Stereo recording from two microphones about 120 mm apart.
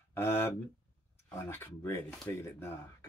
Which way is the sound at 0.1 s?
20° left (ahead or behind).